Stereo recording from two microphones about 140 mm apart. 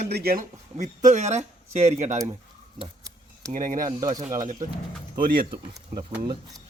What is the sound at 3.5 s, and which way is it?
Speech, 75° right (ahead or behind).